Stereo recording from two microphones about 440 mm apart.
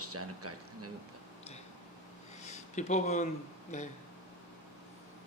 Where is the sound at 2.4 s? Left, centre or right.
Centre.